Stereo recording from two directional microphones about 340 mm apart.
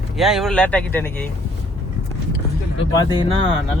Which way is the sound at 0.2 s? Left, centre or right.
Centre.